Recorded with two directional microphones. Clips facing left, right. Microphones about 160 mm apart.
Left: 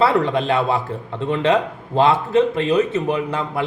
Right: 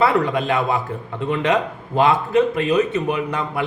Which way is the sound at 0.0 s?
30° left (ahead or behind).